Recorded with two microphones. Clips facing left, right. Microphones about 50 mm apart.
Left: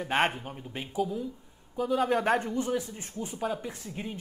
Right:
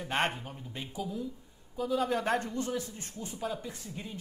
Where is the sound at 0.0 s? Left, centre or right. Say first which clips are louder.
Left 4 dB; centre.